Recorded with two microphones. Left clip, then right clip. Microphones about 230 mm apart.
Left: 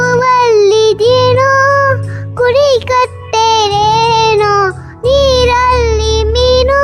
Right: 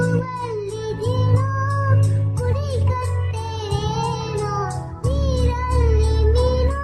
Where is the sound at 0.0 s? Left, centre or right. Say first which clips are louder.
Left 16 dB; left.